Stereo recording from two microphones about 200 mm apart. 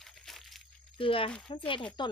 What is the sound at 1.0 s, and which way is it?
Speech, 25° left (ahead or behind).